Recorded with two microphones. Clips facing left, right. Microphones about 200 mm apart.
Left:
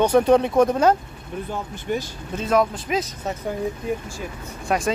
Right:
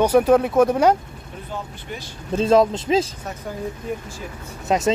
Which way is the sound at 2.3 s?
25° right (ahead or behind).